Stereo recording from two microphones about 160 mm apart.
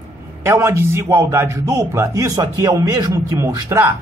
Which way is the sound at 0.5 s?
15° right (ahead or behind).